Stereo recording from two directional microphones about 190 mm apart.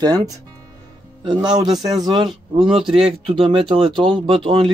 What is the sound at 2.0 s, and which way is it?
Speech, 25° right (ahead or behind).